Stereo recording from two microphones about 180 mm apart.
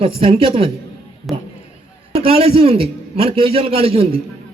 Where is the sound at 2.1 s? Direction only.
35° right (ahead or behind).